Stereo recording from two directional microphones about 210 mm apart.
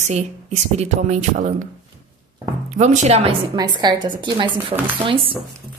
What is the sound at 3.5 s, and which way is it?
Speech, 20° right (ahead or behind).